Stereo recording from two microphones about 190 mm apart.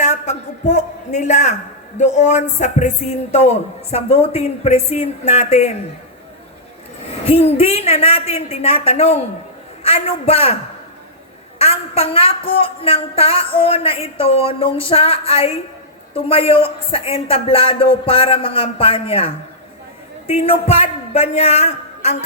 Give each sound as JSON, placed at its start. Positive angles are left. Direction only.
{"t": 0.0, "sound": "a man's voice", "side_deg": 35}
{"t": 3.9, "sound": "a woman's voice", "side_deg": 30}
{"t": 7.3, "sound": "a woman's voice", "side_deg": 30}
{"t": 11.6, "sound": "a woman's voice", "side_deg": 35}